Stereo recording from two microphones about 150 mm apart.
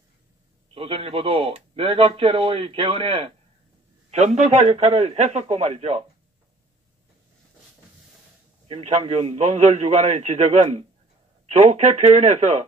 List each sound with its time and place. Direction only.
0.7 s a man's voice: 40° right (ahead or behind)
8.6 s a man's voice: 40° right (ahead or behind)